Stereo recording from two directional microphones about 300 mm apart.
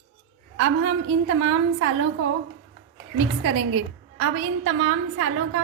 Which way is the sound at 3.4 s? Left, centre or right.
Right.